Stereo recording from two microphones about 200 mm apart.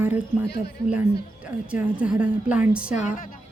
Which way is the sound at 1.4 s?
5° right (ahead or behind).